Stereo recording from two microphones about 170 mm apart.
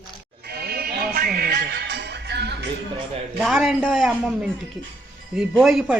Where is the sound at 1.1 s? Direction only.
60° right (ahead or behind); by 2.7 s 75° right (ahead or behind).